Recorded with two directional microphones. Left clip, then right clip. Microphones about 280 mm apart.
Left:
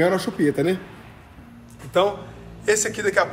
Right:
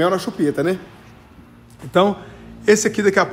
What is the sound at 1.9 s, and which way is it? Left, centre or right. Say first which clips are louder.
Speech: right 3 dB; right.